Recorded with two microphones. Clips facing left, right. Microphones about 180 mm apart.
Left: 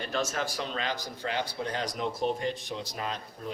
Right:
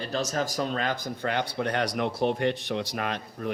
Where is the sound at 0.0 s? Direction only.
35° right (ahead or behind).